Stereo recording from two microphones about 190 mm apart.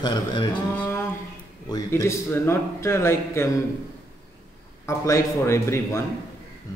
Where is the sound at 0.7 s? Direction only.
10° left (ahead or behind).